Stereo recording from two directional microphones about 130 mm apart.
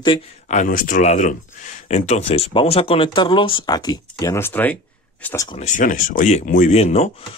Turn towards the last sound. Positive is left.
turn(degrees=55)  # may be behind; listen again after turning